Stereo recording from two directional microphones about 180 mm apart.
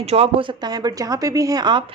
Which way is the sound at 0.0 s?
35° right (ahead or behind).